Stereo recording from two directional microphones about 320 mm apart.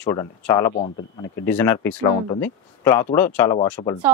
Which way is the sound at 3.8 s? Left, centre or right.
Centre.